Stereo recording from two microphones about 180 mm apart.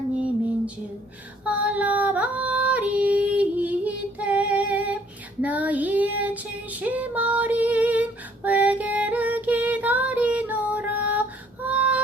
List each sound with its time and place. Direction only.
1.5 s yodeling: 5° right (ahead or behind)
5.4 s child singing: 10° right (ahead or behind)
8.4 s music: 10° right (ahead or behind)